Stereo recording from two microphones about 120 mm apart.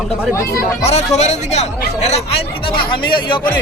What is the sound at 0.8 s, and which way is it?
Speech, 65° left (ahead or behind).